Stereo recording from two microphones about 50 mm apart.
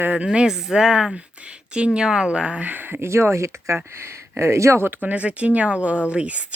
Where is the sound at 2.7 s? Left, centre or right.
Right.